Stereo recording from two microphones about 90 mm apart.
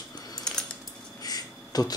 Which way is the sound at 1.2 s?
45° left (ahead or behind).